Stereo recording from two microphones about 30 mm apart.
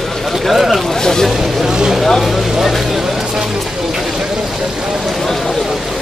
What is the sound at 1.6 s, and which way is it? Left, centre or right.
Vehicle, right.